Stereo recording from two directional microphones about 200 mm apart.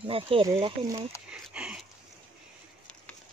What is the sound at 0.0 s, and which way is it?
Speech, 25° right (ahead or behind).